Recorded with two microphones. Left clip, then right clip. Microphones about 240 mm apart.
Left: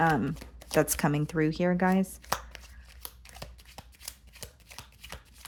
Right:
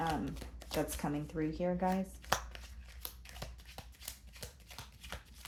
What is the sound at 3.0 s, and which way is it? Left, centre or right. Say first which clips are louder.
Shuffling cards: left 3 dB; centre.